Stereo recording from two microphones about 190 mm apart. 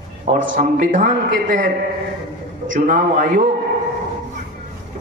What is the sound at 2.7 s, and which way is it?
Speech, 45° right (ahead or behind).